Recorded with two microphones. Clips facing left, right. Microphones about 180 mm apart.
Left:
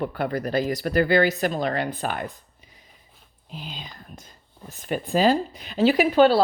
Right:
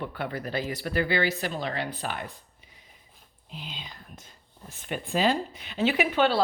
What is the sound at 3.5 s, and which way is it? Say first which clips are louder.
A woman's voice: left 4 dB; 45° left (ahead or behind).